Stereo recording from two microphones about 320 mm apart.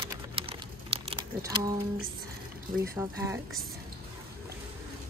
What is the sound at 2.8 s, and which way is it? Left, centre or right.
Speech, centre.